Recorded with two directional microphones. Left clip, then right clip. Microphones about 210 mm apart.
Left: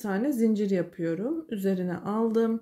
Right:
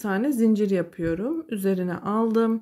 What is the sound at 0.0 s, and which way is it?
Speech, 20° right (ahead or behind).